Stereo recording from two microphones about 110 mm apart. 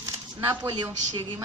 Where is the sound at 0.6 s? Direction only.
35° right (ahead or behind).